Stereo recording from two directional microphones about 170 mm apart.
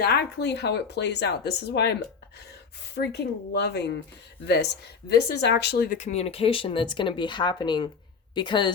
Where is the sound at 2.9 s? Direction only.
75° left (ahead or behind).